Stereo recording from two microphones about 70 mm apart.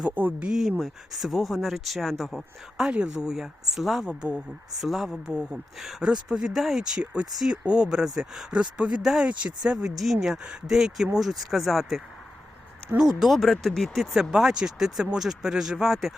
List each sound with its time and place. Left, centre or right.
0.1 s speech: right
0.4 s speech: centre
5.3 s speech: centre